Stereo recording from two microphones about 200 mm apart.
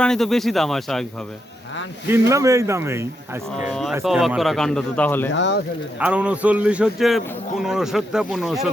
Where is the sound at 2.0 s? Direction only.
15° right (ahead or behind).